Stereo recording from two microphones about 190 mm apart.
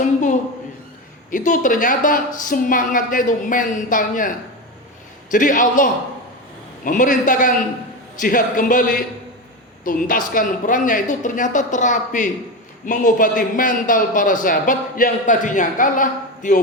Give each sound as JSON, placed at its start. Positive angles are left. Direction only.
{"t": 0.0, "sound": "a sound", "side_deg": 40}
{"t": 1.3, "sound": "a man's voice", "side_deg": 45}
{"t": 5.3, "sound": "a man's voice", "side_deg": 45}